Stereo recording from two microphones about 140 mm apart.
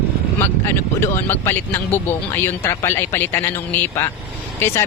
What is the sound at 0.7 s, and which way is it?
Speech, 15° left (ahead or behind).